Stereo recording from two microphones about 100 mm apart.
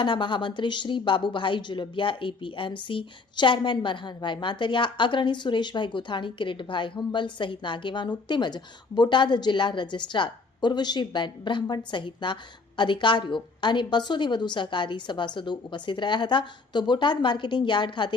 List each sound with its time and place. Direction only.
0.0 s speech: 55° left (ahead or behind)